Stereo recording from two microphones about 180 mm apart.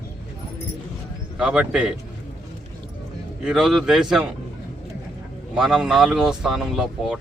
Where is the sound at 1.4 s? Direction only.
5° right (ahead or behind).